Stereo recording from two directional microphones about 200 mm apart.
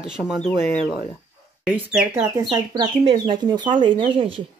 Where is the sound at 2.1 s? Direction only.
20° right (ahead or behind).